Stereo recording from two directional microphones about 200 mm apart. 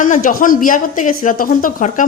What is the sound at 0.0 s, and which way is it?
Speech, 40° left (ahead or behind).